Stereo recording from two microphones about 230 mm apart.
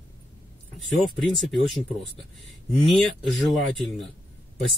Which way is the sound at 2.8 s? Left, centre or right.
Centre.